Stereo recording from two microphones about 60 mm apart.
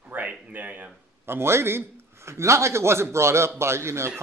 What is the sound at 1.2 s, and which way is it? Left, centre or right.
Speech, right.